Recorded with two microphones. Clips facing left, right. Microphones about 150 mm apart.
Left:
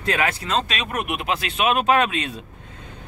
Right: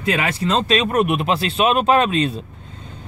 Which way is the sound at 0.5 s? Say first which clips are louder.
Right 7 dB; 30° right (ahead or behind).